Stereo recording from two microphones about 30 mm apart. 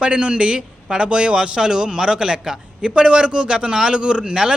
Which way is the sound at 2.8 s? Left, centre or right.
Right.